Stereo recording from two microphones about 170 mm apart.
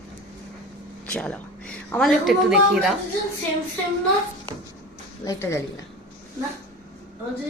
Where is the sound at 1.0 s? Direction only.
5° left (ahead or behind).